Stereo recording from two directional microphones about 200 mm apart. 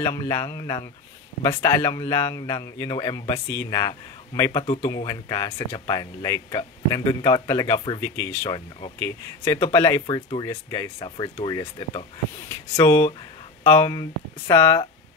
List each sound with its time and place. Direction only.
0.0 s a man's voice: 15° left (ahead or behind)
12.4 s a man's voice: 15° left (ahead or behind)